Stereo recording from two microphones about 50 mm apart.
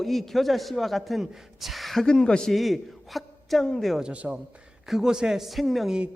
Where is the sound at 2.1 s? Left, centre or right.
Centre.